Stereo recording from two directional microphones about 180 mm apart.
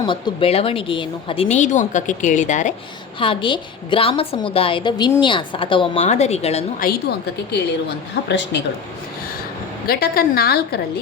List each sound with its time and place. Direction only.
0.0 s a woman's voice: 30° left (ahead or behind)
3.2 s a woman's voice: 30° left (ahead or behind)
6.7 s a woman's voice: 60° left (ahead or behind); by 8.6 s 75° left (ahead or behind)
9.8 s a woman's voice: 55° left (ahead or behind)